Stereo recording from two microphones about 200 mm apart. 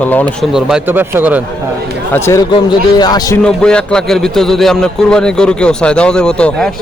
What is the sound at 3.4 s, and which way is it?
A man's voice, 5° left (ahead or behind).